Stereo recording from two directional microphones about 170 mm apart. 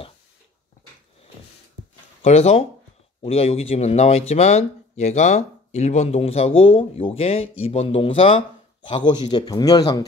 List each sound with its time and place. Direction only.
2.2 s speech: 40° left (ahead or behind); by 10.0 s 20° left (ahead or behind)